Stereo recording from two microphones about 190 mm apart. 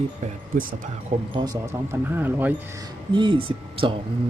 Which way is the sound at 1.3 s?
20° right (ahead or behind).